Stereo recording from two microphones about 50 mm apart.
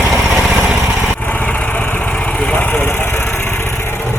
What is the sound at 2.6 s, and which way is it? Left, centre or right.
Vehicle, left.